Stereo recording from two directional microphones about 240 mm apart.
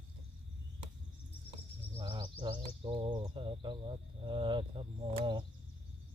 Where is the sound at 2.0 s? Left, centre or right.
Right.